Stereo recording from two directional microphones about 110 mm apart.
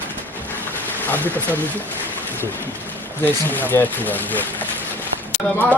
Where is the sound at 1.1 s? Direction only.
15° left (ahead or behind).